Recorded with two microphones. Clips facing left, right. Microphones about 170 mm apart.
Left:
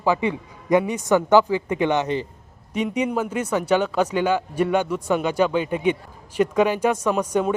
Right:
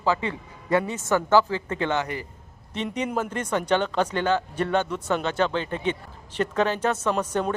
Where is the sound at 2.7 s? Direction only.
10° left (ahead or behind).